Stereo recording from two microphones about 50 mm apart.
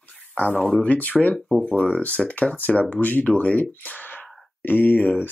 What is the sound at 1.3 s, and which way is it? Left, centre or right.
Speech, centre.